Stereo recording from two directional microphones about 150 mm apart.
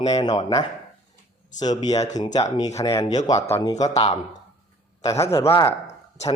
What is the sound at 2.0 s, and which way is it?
Speech, 50° left (ahead or behind).